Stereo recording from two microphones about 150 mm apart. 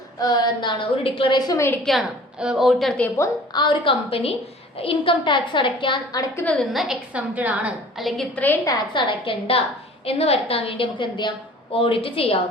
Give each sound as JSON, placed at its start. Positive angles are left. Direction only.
{"t": 0.2, "sound": "a woman's voice", "side_deg": 25}
{"t": 1.8, "sound": "a woman's voice", "side_deg": 0}
{"t": 3.5, "sound": "a woman's voice", "side_deg": 30}
{"t": 6.3, "sound": "a woman's voice", "side_deg": 10}
{"t": 6.7, "sound": "a woman's voice", "side_deg": -5}
{"t": 8.6, "sound": "a woman's voice", "side_deg": 30}